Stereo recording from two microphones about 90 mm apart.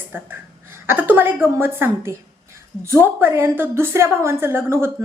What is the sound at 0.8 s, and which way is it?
A woman's voice, 20° right (ahead or behind).